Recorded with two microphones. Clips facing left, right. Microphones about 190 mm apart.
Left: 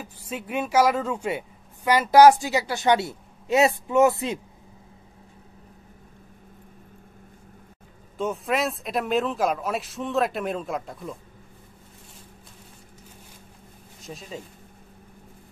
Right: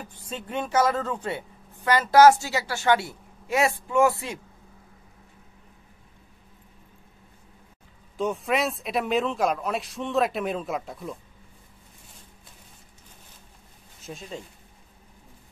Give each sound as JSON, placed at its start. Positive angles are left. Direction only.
{"t": 0.0, "sound": "a woman's voice", "side_deg": 10}
{"t": 8.2, "sound": "speech", "side_deg": 0}
{"t": 14.0, "sound": "speech", "side_deg": 0}